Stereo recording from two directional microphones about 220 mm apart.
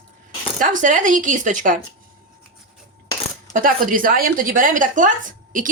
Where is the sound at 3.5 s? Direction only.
40° right (ahead or behind).